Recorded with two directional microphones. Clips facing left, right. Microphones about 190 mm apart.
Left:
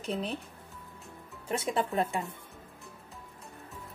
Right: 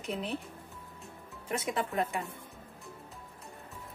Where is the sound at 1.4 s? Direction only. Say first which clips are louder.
Left 3 dB; 30° left (ahead or behind).